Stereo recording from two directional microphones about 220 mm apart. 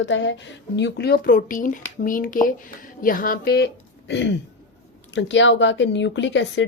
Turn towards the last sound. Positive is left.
turn(degrees=55)  # may be behind; listen again after turning